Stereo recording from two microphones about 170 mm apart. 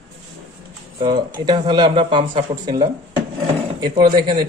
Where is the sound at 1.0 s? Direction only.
25° right (ahead or behind).